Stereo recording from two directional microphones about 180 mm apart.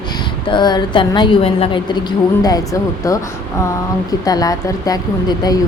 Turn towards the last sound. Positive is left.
turn(degrees=20)  # may be behind; listen again after turning